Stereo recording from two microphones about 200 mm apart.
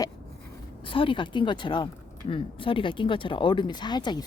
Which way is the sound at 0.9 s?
25° left (ahead or behind).